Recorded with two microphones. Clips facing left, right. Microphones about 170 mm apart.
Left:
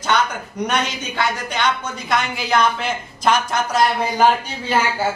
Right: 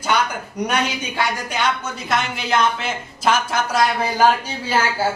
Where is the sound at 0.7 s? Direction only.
10° right (ahead or behind).